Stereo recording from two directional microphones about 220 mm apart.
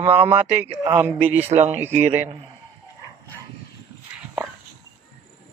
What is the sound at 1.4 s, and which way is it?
Speech, 30° right (ahead or behind).